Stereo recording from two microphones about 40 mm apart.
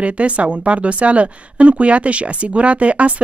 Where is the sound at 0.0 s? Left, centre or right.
Right.